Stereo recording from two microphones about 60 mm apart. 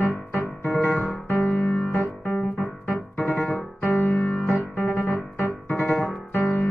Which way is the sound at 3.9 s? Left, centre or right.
Left.